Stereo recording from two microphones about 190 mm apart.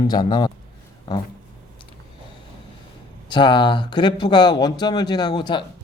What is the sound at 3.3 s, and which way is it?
Speech, 25° left (ahead or behind).